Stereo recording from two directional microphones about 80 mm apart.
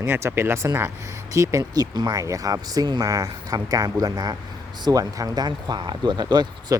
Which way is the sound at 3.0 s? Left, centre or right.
Right.